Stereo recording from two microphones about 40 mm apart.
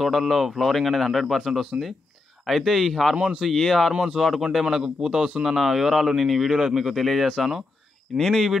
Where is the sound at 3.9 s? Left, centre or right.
Centre.